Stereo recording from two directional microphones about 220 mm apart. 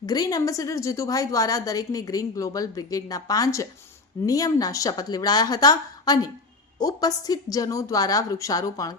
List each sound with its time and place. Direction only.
0.0 s a woman's voice: 15° left (ahead or behind)